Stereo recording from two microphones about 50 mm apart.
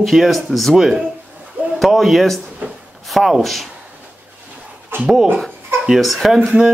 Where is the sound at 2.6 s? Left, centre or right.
Right.